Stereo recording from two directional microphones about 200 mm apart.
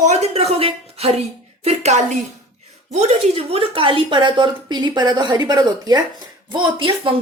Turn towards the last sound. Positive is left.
turn(degrees=-25)  # may be behind; listen again after turning